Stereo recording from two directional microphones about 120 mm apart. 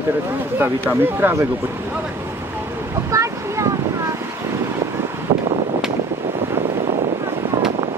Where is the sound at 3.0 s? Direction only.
25° right (ahead or behind).